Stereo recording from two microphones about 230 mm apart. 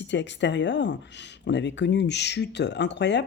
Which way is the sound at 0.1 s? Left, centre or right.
Left.